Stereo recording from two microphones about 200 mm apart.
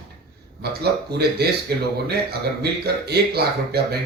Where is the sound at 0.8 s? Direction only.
55° right (ahead or behind).